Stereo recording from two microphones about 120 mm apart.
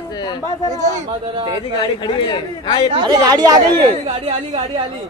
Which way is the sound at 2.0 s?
40° left (ahead or behind).